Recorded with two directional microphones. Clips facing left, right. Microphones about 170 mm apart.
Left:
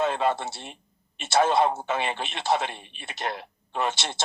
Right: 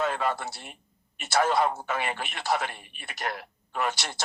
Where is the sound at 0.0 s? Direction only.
25° left (ahead or behind).